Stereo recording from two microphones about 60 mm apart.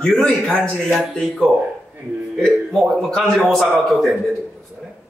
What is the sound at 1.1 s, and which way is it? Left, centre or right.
Speech, centre.